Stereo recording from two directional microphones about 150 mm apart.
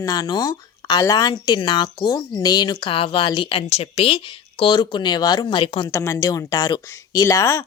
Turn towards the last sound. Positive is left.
turn(degrees=20)  # may be behind; listen again after turning